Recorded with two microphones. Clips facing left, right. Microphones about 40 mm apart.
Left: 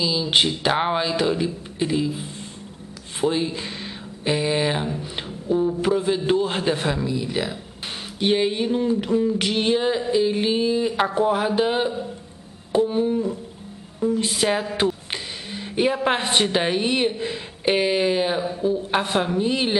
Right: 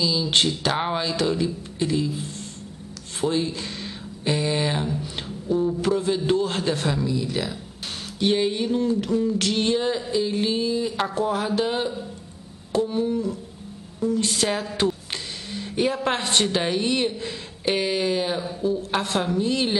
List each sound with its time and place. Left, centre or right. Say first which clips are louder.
0.0 s a woman's voice: left 1 dB; centre
12.7 s a sound: left 3 dB; centre
13.9 s a woman's voice: left 1 dB; centre